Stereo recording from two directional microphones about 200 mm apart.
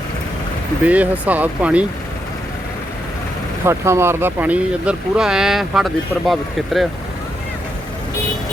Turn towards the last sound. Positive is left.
turn(degrees=0)  # may be behind; listen again after turning